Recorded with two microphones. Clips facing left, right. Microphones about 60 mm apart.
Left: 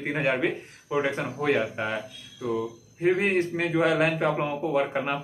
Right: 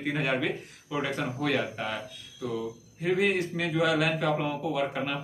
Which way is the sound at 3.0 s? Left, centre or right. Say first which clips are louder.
Left 3 dB; left.